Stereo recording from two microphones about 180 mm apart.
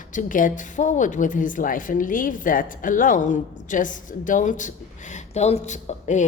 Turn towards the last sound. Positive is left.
turn(degrees=40)  # may be behind; listen again after turning